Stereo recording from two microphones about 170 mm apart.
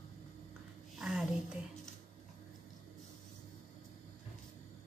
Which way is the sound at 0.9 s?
5° right (ahead or behind).